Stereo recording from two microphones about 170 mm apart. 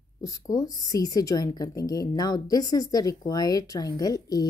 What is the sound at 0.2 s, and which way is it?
A woman's voice, 20° left (ahead or behind).